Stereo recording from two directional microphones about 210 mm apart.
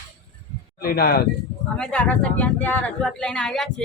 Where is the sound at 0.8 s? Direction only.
45° left (ahead or behind).